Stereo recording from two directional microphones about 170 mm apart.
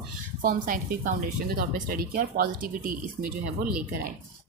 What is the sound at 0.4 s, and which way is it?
A woman's voice, 55° right (ahead or behind).